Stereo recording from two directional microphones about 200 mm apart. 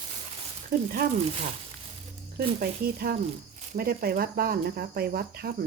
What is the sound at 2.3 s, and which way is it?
Speech, 50° right (ahead or behind).